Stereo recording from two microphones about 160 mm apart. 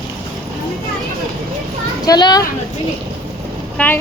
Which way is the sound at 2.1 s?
25° left (ahead or behind).